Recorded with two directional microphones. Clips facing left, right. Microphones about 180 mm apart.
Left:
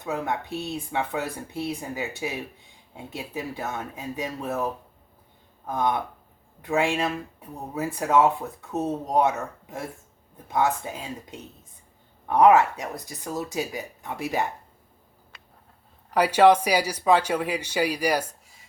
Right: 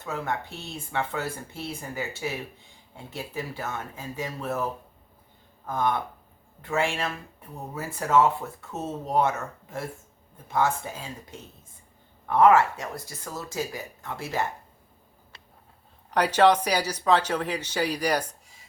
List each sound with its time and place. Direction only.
0.0 s speech: 15° left (ahead or behind)
16.1 s speech: 10° left (ahead or behind)